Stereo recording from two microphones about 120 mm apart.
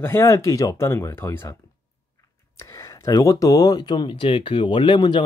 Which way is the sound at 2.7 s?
25° left (ahead or behind).